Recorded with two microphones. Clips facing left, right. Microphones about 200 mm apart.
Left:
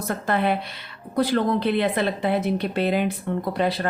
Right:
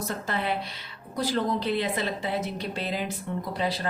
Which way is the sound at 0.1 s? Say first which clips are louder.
Left 9 dB; 55° left (ahead or behind).